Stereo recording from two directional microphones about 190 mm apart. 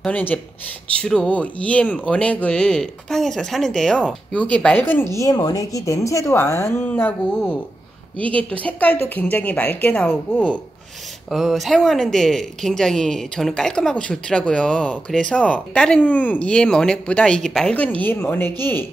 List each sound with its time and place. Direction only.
0.0 s a woman's voice: 10° left (ahead or behind)